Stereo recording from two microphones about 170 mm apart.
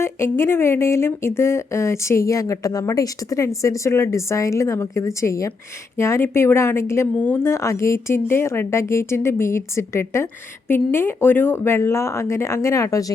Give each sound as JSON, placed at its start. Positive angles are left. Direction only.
{"t": 0.0, "sound": "speech", "side_deg": 15}